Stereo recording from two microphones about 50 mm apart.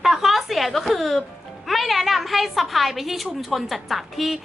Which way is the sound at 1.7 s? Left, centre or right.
Centre.